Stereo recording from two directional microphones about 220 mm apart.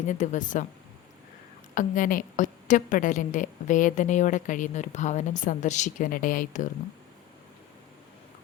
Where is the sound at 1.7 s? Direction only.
35° left (ahead or behind).